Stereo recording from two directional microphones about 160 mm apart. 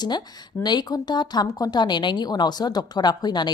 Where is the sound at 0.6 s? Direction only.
25° left (ahead or behind).